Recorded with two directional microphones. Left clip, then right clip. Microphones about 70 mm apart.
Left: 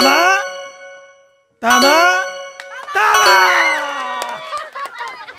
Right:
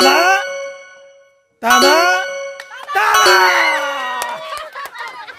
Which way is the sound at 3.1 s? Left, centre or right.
Centre.